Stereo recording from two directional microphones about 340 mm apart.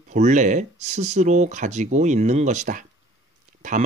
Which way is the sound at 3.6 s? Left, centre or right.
Right.